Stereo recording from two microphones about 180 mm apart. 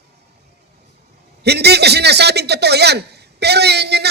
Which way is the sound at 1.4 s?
65° right (ahead or behind).